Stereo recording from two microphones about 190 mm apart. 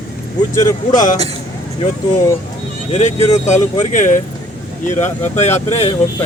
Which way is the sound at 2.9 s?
35° left (ahead or behind).